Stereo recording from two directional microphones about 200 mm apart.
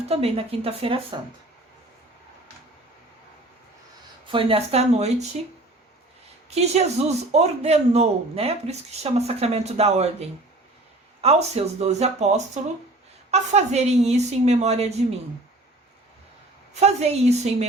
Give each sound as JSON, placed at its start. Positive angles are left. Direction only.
{"t": 0.1, "sound": "speech", "side_deg": -30}
{"t": 4.3, "sound": "speech", "side_deg": -25}
{"t": 6.5, "sound": "speech", "side_deg": -35}
{"t": 16.8, "sound": "speech", "side_deg": -30}